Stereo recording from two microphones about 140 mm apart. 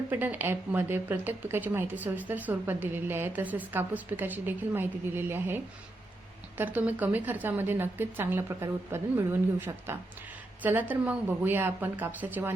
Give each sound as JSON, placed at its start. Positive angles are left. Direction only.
{"t": 0.1, "sound": "a woman's voice", "side_deg": -15}
{"t": 6.6, "sound": "a woman's voice", "side_deg": -10}